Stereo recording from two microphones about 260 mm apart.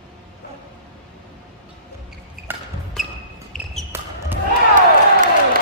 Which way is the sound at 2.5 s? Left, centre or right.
Centre.